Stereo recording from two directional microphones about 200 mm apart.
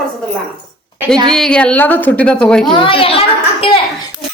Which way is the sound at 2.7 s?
25° left (ahead or behind).